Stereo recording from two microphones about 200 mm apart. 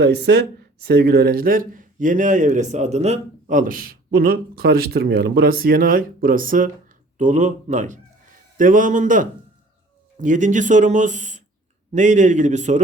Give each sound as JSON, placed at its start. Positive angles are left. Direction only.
{"t": 0.0, "sound": "speech", "side_deg": -55}